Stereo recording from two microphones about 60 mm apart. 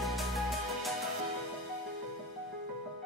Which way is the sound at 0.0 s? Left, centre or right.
Centre.